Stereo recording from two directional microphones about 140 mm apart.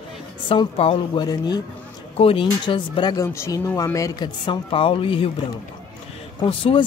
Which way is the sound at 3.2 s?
20° left (ahead or behind).